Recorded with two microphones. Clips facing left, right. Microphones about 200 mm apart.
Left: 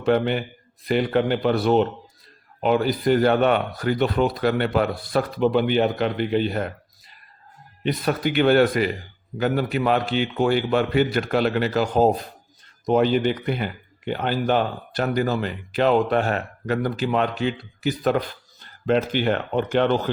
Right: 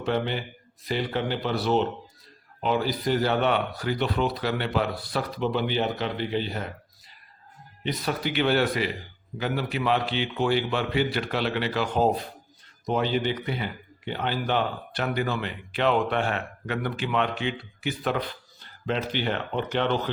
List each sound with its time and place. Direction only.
0.0 s speech: 55° left (ahead or behind)
7.9 s a man's voice: 50° left (ahead or behind)